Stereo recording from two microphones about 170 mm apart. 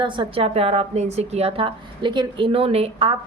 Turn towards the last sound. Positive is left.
turn(degrees=-35)  # may be behind; listen again after turning